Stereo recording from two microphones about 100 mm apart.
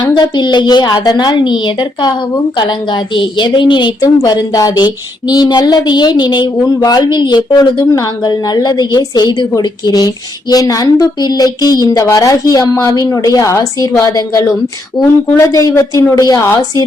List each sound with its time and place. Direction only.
0.0 s a woman's voice: 50° left (ahead or behind); by 14.5 s 30° left (ahead or behind)
15.0 s speech: 5° left (ahead or behind)
15.5 s a woman's voice: 35° left (ahead or behind)